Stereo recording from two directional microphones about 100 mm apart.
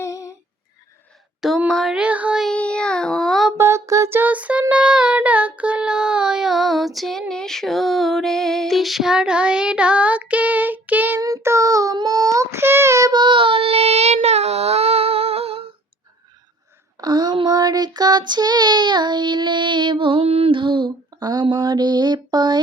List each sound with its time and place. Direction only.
0.0 s a sound: 35° left (ahead or behind)
1.4 s speech: 5° right (ahead or behind)
2.0 s child singing: 15° right (ahead or behind)
2.4 s child singing: 10° left (ahead or behind)
3.6 s a sound: 30° right (ahead or behind)
4.2 s music: 15° right (ahead or behind)
4.7 s child singing: 10° right (ahead or behind)
11.2 s child singing: 35° right (ahead or behind)
13.1 s child singing: 50° right (ahead or behind); by 15.6 s 85° right
17.0 s child singing: 45° right (ahead or behind)
21.4 s mantra: 45° right (ahead or behind)